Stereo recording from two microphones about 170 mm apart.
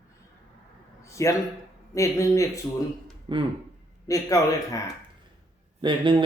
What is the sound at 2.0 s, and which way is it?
Speech, 20° left (ahead or behind).